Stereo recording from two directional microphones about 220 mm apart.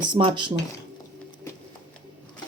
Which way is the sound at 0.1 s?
20° right (ahead or behind).